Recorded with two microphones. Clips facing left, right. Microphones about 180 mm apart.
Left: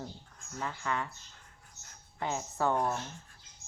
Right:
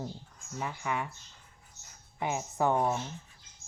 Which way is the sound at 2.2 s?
15° right (ahead or behind).